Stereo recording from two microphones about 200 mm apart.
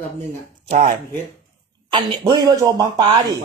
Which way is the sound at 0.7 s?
35° right (ahead or behind).